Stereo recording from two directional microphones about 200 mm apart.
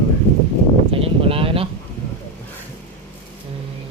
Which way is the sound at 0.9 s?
30° right (ahead or behind).